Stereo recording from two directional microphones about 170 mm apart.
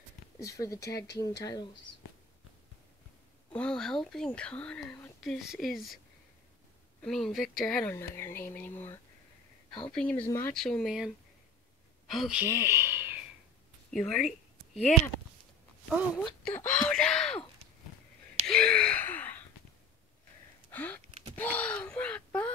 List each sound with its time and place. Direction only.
0.4 s speech: 20° left (ahead or behind)
3.5 s speech: 5° left (ahead or behind)
7.0 s speech: 5° left (ahead or behind)
7.9 s speech: 15° left (ahead or behind)
10.5 s speech: centre (ahead or behind)
12.1 s speech: 5° right (ahead or behind)
13.8 s a sound: centre (ahead or behind)
16.4 s speech: 5° left (ahead or behind)
18.5 s gasp: 5° left (ahead or behind)
20.7 s a sound: 10° left (ahead or behind)